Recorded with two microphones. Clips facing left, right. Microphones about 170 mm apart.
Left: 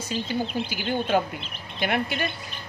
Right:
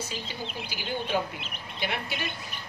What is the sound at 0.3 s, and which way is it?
Speech, 55° left (ahead or behind).